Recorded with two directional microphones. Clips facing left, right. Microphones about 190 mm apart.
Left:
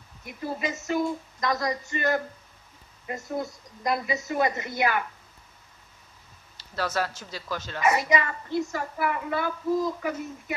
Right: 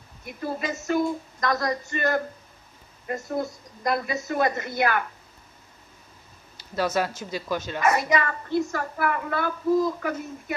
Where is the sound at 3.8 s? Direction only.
15° left (ahead or behind).